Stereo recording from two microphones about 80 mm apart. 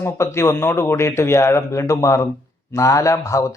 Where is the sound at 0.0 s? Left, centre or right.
Left.